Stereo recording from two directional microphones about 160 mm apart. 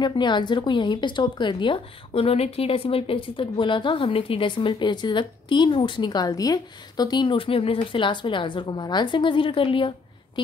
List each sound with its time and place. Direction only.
0.0 s speech: 30° left (ahead or behind)